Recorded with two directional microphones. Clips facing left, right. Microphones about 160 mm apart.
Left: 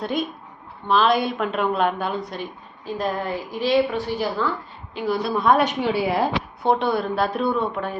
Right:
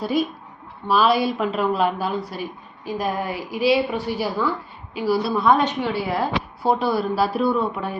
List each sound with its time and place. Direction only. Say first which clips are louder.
0.0 s a woman's voice: right 3 dB; 5° right (ahead or behind)
5.6 s a woman's voice: left 2 dB; 15° left (ahead or behind)
6.6 s a woman's voice: even; 5° right (ahead or behind)